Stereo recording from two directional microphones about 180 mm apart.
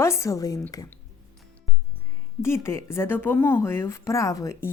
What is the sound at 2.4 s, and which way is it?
A woman's voice, 15° left (ahead or behind).